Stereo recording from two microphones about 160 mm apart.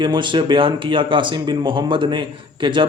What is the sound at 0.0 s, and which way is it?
Speech, 30° right (ahead or behind).